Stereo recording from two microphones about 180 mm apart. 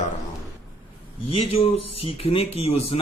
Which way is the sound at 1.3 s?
35° left (ahead or behind).